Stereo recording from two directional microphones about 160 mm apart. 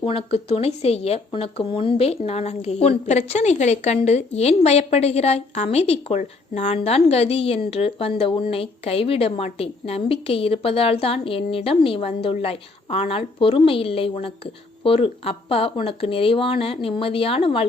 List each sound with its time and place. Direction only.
0.0 s a woman's voice: 35° left (ahead or behind)